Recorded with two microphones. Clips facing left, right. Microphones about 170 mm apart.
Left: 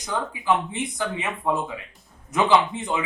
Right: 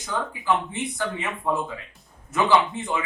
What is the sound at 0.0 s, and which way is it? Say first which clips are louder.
A man's voice: left 1 dB; 15° left (ahead or behind).